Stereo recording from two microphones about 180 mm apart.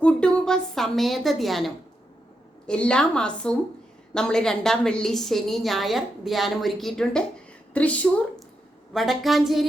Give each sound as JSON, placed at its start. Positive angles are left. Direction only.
{"t": 0.0, "sound": "a woman's voice", "side_deg": 5}